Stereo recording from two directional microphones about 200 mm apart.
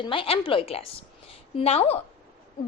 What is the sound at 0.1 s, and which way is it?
A woman's voice, 25° left (ahead or behind).